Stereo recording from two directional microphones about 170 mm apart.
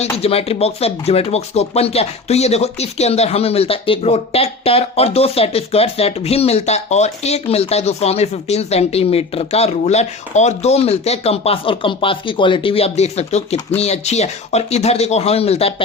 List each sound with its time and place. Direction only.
0.0 s speech: 35° left (ahead or behind)